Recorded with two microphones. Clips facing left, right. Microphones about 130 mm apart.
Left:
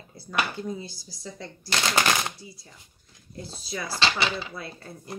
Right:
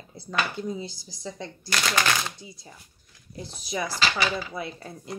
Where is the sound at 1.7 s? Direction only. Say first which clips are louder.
Left 1 dB; 25° left (ahead or behind).